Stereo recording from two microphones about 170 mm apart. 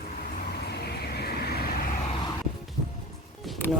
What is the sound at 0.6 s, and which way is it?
Vehicle, 70° left (ahead or behind).